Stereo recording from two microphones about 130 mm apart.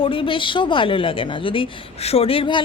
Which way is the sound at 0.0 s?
40° left (ahead or behind).